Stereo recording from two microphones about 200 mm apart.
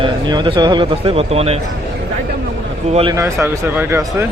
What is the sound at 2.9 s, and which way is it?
Speech, 30° right (ahead or behind).